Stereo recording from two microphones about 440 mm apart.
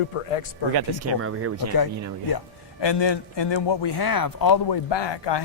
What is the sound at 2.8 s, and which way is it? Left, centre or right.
A man's voice, left.